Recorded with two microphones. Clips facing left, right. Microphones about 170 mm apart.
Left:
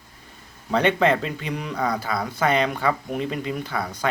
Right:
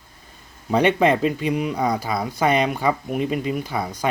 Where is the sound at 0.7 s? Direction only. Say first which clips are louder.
Right 2 dB; 15° right (ahead or behind).